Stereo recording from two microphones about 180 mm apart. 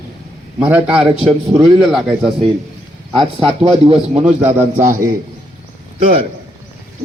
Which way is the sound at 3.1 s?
30° right (ahead or behind).